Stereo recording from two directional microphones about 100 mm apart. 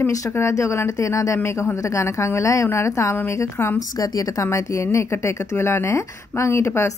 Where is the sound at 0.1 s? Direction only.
30° left (ahead or behind).